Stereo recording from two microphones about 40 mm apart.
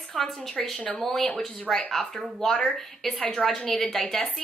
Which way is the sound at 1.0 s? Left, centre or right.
Centre.